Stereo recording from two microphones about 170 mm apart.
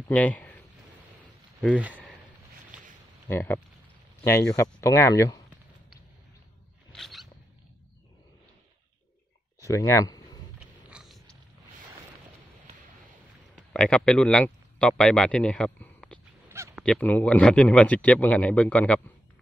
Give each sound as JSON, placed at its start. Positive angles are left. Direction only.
{"t": 0.1, "sound": "a man's voice", "side_deg": 10}
{"t": 1.8, "sound": "speech", "side_deg": -10}
{"t": 3.3, "sound": "speech", "side_deg": 15}
{"t": 6.9, "sound": "a sound", "side_deg": 0}
{"t": 9.6, "sound": "a sound", "side_deg": 20}
{"t": 10.6, "sound": "a sound", "side_deg": -5}
{"t": 13.7, "sound": "speech", "side_deg": 5}
{"t": 16.4, "sound": "honk", "side_deg": -15}
{"t": 16.7, "sound": "speech", "side_deg": 5}